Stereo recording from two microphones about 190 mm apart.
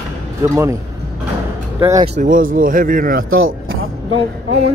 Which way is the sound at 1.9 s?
40° right (ahead or behind).